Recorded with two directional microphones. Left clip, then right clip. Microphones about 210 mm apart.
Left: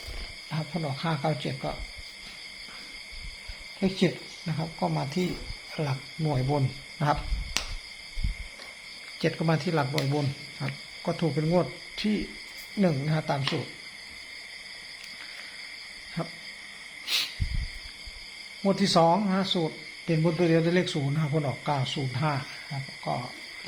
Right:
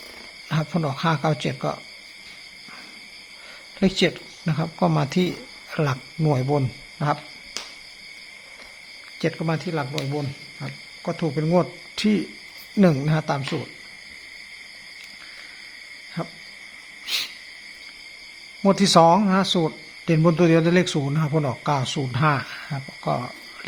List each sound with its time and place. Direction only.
0.5 s speech: 35° right (ahead or behind)
3.8 s speech: 35° right (ahead or behind); by 7.2 s 20° right (ahead or behind)
9.2 s speech: 15° right (ahead or behind)
11.0 s hoot: 15° right (ahead or behind)
12.8 s speech: 25° right (ahead or behind)
17.1 s a sound: 10° right (ahead or behind)
18.6 s speech: 35° right (ahead or behind)